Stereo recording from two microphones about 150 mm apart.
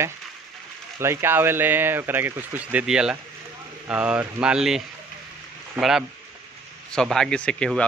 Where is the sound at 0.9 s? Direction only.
15° right (ahead or behind).